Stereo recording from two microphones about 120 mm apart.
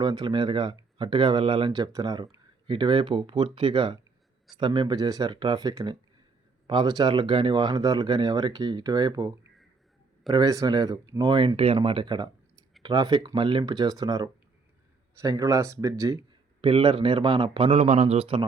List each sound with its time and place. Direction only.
0.0 s speech: 35° right (ahead or behind)
16.6 s speech: 45° right (ahead or behind)
17.7 s speech: 65° right (ahead or behind)